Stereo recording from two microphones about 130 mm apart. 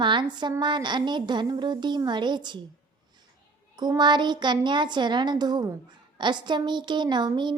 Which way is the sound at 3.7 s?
35° right (ahead or behind).